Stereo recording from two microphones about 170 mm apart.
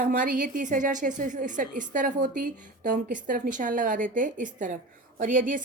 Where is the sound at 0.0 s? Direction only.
50° right (ahead or behind).